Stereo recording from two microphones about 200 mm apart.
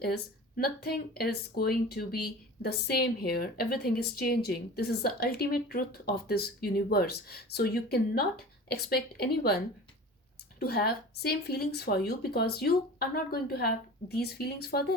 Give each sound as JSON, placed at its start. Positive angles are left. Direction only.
{"t": 0.0, "sound": "speech", "side_deg": 50}
{"t": 10.6, "sound": "speech", "side_deg": 50}